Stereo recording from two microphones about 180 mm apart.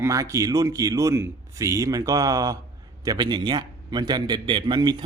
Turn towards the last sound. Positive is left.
turn(degrees=-25)  # may be behind; listen again after turning